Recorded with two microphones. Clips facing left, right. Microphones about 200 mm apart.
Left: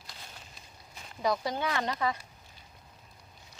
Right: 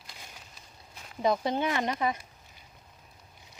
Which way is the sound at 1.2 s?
20° right (ahead or behind).